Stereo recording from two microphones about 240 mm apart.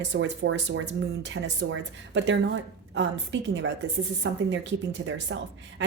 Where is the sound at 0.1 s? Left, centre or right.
Right.